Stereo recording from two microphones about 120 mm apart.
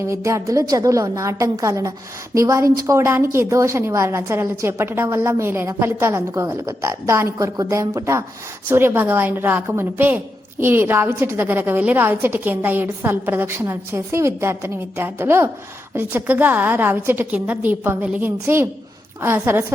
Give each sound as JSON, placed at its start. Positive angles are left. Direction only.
{"t": 0.0, "sound": "a woman's voice", "side_deg": -25}